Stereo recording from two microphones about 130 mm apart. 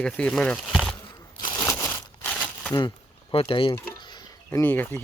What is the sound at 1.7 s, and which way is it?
Crumpling, 20° left (ahead or behind).